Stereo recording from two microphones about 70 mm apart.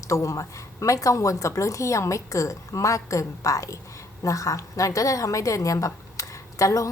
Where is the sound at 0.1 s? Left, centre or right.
Left.